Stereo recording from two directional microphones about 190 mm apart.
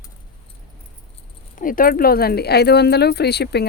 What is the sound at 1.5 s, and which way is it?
Speech, 45° left (ahead or behind).